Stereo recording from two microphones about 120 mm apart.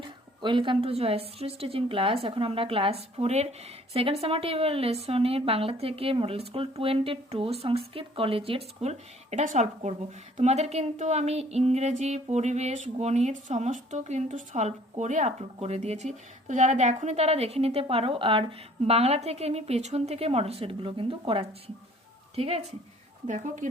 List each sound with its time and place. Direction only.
0.0 s speech: 40° right (ahead or behind); by 15.4 s 70° right (ahead or behind)
15.5 s speech: 60° right (ahead or behind)
23.2 s speech: 90° right